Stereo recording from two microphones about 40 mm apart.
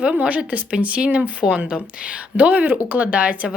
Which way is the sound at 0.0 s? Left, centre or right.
Right.